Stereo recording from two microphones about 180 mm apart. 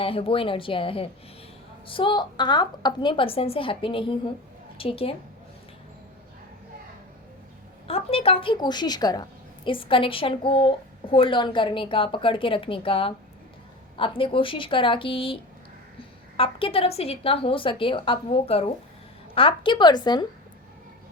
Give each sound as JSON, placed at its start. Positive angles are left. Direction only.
{"t": 0.0, "sound": "a woman's voice", "side_deg": 30}
{"t": 7.9, "sound": "a woman's voice", "side_deg": 30}